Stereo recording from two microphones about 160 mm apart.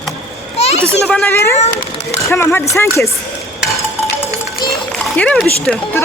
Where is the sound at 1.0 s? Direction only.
5° left (ahead or behind).